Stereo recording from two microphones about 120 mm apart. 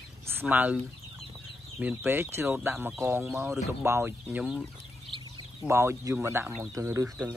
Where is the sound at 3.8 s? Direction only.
20° right (ahead or behind).